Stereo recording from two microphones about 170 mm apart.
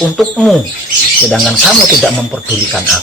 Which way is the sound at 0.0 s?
5° left (ahead or behind).